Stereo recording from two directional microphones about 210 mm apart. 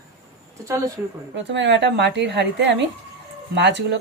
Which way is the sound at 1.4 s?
60° right (ahead or behind).